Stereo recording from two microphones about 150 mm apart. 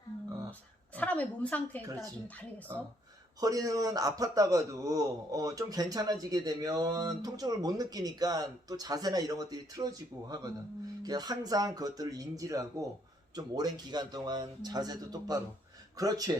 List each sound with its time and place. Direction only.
0.9 s a woman's voice: 10° left (ahead or behind)
1.9 s a man's voice: 25° right (ahead or behind)